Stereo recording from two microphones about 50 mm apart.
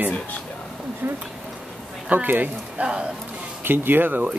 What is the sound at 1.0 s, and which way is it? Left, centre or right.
Speech, right.